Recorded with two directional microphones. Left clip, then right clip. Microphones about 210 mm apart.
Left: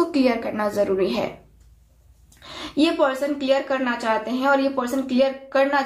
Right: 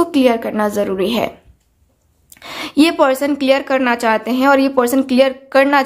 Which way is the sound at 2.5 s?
50° right (ahead or behind).